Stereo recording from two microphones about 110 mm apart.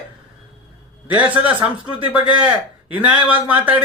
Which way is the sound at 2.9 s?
15° right (ahead or behind).